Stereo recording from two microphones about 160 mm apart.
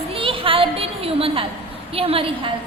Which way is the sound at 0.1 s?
35° right (ahead or behind).